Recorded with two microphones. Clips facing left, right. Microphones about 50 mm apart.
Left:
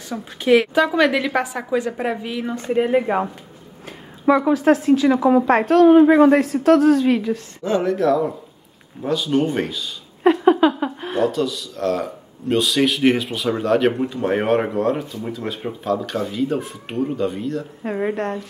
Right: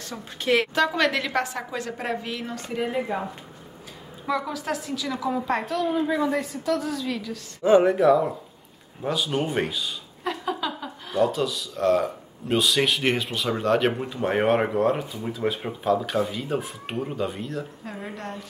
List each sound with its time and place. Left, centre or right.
0.1 s a woman's voice: centre
2.5 s speech: left
4.3 s speech: left
5.5 s a woman's voice: left
7.1 s speech: left
7.6 s speech: centre
10.2 s a sound: left
11.2 s speech: centre
17.9 s speech: left